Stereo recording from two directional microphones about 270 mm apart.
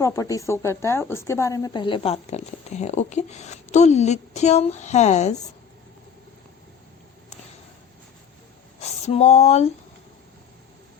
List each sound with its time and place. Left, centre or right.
0.0 s a woman's voice: centre
9.0 s a woman's voice: left